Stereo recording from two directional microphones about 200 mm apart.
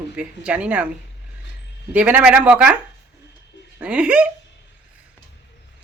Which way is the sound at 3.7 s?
5° right (ahead or behind).